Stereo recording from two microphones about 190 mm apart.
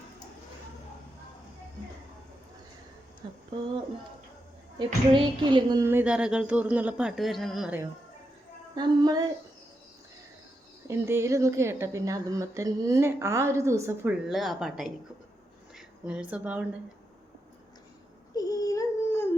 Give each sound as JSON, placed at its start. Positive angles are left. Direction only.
{"t": 3.2, "sound": "a sound", "side_deg": -25}
{"t": 4.8, "sound": "speech", "side_deg": -25}
{"t": 8.7, "sound": "a woman's voice", "side_deg": -20}
{"t": 10.8, "sound": "speech", "side_deg": -15}
{"t": 14.3, "sound": "speech", "side_deg": 0}
{"t": 18.3, "sound": "a sound", "side_deg": 20}